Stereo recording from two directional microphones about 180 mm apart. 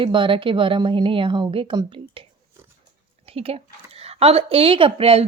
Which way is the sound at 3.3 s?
30° right (ahead or behind).